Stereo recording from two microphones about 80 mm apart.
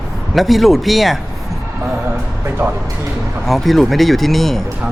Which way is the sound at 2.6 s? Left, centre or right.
Right.